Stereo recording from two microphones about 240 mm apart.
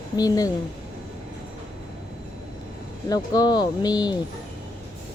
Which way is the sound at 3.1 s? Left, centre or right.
Centre.